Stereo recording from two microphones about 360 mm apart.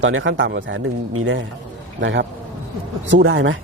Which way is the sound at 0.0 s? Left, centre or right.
Right.